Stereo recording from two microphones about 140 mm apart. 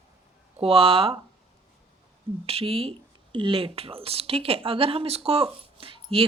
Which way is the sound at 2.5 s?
40° right (ahead or behind).